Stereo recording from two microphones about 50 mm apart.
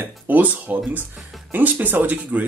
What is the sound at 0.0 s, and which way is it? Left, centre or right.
Speech, right.